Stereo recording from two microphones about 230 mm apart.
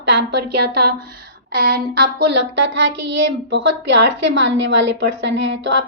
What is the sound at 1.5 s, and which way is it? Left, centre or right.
A child's voice, right.